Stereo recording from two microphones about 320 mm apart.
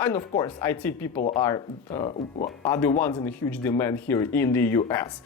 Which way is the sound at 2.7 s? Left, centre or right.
Centre.